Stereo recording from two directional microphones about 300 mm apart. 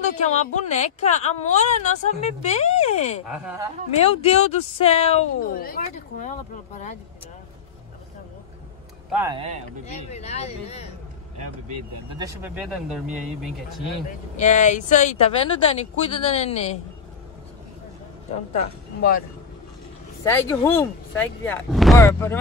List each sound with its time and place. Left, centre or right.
0.2 s a woman's voice: left
3.3 s speech: centre
4.2 s a woman's voice: left
9.1 s speech: centre
9.8 s a woman's voice: left
12.2 s speech: centre
14.3 s a woman's voice: left
18.9 s a woman's voice: left
20.2 s speech: centre